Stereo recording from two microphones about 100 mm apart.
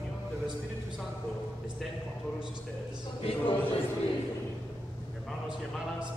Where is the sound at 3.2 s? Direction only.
70° left (ahead or behind).